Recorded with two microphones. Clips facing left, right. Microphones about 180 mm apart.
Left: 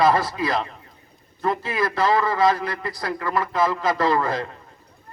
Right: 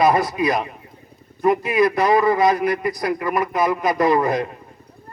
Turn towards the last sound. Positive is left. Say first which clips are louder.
# right 4 dB
turn(degrees=-20)  # may be behind; listen again after turning